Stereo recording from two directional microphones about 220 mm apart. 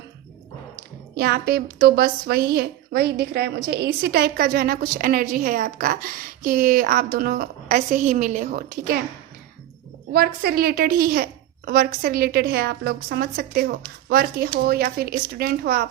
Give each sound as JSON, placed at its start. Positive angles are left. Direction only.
{"t": 1.1, "sound": "a woman's voice", "side_deg": -45}
{"t": 10.1, "sound": "a woman's voice", "side_deg": -45}